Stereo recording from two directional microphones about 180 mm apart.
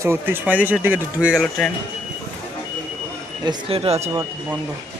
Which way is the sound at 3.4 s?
25° right (ahead or behind).